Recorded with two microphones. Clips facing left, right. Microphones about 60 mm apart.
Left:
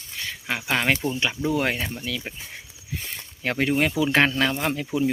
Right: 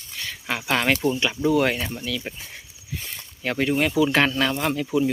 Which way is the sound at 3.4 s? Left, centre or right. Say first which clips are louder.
Even; left.